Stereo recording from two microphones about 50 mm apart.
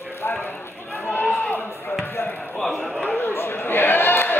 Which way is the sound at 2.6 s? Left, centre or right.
Centre.